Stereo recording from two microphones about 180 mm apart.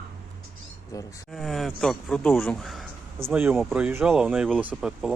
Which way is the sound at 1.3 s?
Centre (ahead or behind).